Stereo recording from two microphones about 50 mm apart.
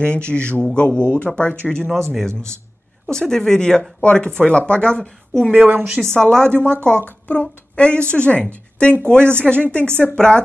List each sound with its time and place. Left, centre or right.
0.0 s speech: left
2.1 s speech: centre
5.5 s a woman's voice: right
5.9 s a woman's voice: centre